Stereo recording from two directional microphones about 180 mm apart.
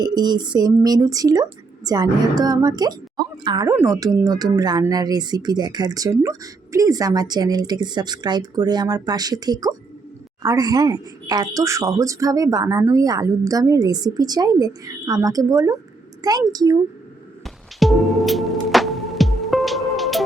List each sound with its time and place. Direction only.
0.0 s speech: 25° right (ahead or behind)
17.4 s music: centre (ahead or behind)